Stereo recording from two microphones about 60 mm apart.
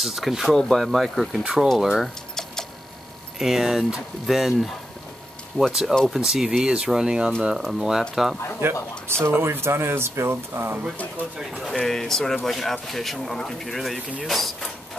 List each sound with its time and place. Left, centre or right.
0.0 s speech: centre
1.4 s speech: centre
3.3 s speech: centre
8.6 s speech: right
11.5 s speech: centre